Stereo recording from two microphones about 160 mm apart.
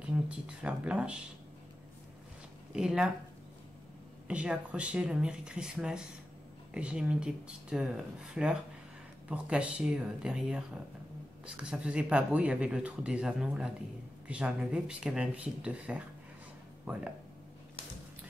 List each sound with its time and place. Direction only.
0.0 s speech: 5° right (ahead or behind)
2.7 s speech: 5° right (ahead or behind)
4.3 s speech: 5° right (ahead or behind)